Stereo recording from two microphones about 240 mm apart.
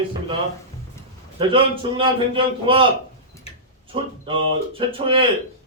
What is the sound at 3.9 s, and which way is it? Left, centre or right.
A man's voice, right.